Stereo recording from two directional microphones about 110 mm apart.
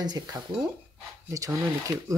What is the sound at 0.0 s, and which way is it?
Speech, 40° right (ahead or behind).